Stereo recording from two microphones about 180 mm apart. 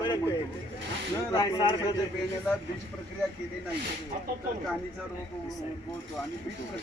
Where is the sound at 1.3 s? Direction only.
25° left (ahead or behind).